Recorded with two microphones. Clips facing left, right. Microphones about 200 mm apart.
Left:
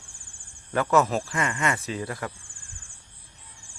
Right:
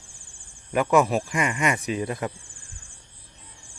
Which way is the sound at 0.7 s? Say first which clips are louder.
Right 2 dB; 15° right (ahead or behind).